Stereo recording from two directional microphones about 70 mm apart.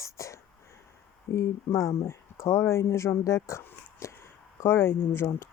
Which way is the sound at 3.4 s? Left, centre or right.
Left.